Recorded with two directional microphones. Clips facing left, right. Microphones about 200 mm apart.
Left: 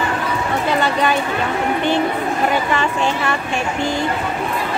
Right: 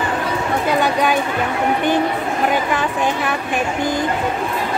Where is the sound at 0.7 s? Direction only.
10° right (ahead or behind).